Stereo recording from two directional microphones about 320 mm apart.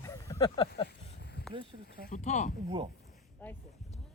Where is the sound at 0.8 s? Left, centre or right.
Left.